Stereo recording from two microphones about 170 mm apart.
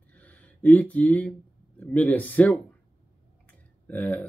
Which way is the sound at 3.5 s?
10° left (ahead or behind).